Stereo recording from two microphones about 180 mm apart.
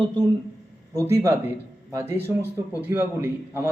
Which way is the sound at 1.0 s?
15° right (ahead or behind).